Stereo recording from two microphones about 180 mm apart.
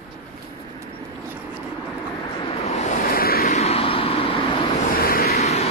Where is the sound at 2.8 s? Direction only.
50° left (ahead or behind).